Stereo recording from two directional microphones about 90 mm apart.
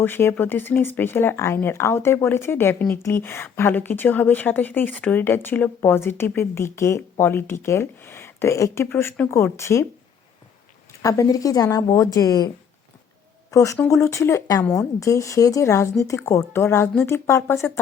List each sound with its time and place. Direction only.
0.0 s a woman's voice: 25° left (ahead or behind)
11.0 s speech: 40° left (ahead or behind)
13.5 s a woman's voice: 40° left (ahead or behind)